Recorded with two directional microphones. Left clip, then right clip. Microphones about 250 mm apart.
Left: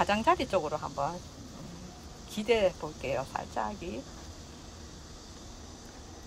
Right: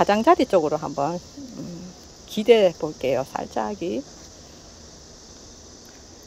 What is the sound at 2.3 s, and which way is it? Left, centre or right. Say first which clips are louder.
Speech: right 12 dB; right.